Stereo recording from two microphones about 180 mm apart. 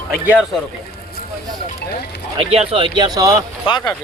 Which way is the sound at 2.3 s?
30° right (ahead or behind).